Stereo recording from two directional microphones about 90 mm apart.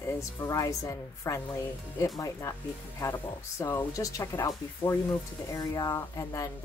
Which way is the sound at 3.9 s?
40° left (ahead or behind).